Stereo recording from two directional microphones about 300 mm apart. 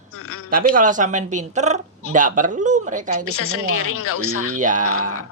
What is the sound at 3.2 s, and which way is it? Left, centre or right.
A woman's voice, left.